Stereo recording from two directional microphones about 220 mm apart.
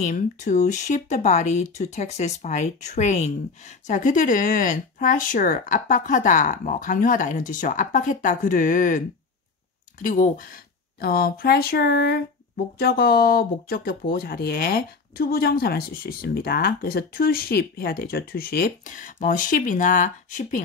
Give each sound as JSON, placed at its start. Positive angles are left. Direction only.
{"t": 0.0, "sound": "speech", "side_deg": 35}
{"t": 10.0, "sound": "speech", "side_deg": 40}